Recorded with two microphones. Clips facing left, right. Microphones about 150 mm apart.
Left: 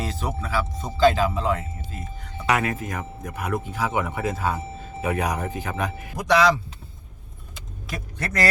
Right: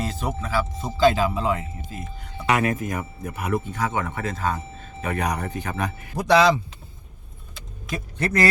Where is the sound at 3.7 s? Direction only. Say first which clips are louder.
Left 1 dB; 10° left (ahead or behind).